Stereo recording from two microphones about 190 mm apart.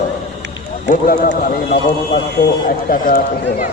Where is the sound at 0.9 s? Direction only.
45° left (ahead or behind).